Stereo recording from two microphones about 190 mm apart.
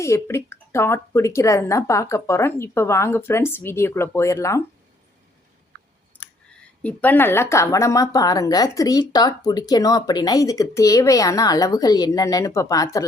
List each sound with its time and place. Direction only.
0.0 s speech: 15° left (ahead or behind)
6.1 s speech: 5° left (ahead or behind)